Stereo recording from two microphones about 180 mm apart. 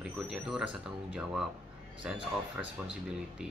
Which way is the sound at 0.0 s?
5° right (ahead or behind).